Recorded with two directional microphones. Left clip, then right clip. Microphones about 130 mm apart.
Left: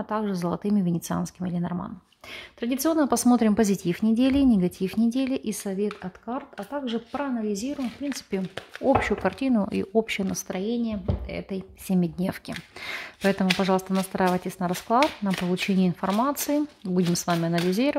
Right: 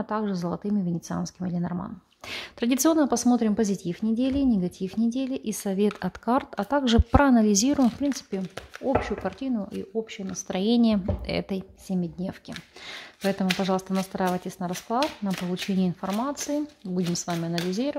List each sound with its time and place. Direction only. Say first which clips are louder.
0.0 s speech: left 1 dB; centre (ahead or behind)
2.3 s a woman's voice: right 3 dB; 20° right (ahead or behind)
3.0 s speech: left 1 dB; centre (ahead or behind)
5.5 s speech: right 1 dB; 5° right (ahead or behind)
6.0 s speech: right 8 dB; 35° right (ahead or behind)
8.4 s speech: left 3 dB; 15° left (ahead or behind)
10.5 s a woman's voice: right 8 dB; 15° right (ahead or behind)
11.9 s speech: left 5 dB; 15° left (ahead or behind)